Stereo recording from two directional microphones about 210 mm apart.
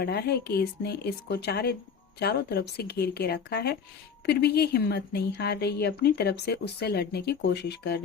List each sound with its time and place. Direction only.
0.0 s a woman's voice: 50° left (ahead or behind)